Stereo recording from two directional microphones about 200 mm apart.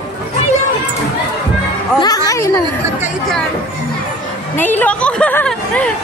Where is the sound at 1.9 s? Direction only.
20° left (ahead or behind).